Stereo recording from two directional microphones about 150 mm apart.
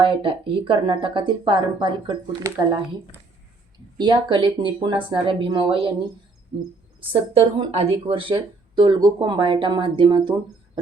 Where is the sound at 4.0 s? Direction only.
30° right (ahead or behind).